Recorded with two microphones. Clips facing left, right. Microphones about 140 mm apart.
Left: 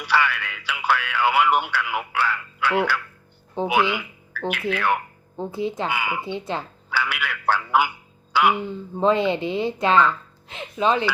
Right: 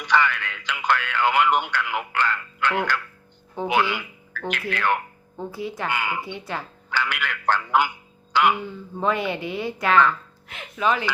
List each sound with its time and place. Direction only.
0.0 s speech: 10° left (ahead or behind)
5.4 s speech: 25° left (ahead or behind)
5.9 s speech: 10° left (ahead or behind)
6.2 s speech: 25° left (ahead or behind)
6.9 s a man's voice: 10° left (ahead or behind)
9.0 s speech: 25° left (ahead or behind)